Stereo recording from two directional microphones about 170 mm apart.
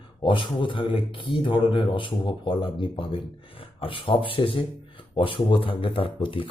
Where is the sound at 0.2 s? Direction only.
30° left (ahead or behind).